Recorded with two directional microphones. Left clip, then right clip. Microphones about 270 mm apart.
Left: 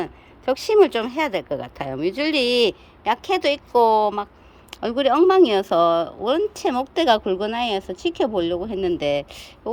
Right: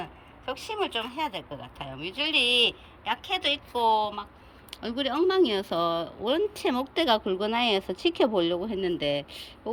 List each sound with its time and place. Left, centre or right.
0.4 s speech: left; by 9.5 s centre